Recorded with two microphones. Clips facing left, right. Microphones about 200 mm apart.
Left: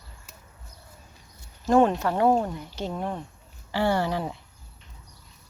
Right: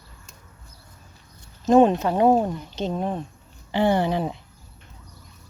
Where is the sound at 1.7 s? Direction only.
20° right (ahead or behind).